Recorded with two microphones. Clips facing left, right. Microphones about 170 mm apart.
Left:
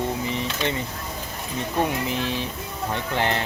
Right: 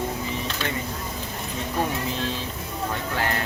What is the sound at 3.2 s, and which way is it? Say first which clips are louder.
Speech: left 3 dB; 25° left (ahead or behind).